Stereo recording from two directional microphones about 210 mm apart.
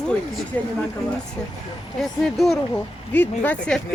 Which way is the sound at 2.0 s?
Centre (ahead or behind).